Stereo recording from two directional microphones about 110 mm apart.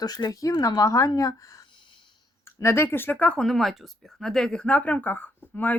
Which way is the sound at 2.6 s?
25° left (ahead or behind).